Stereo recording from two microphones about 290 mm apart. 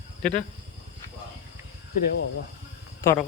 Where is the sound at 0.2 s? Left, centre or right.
Centre.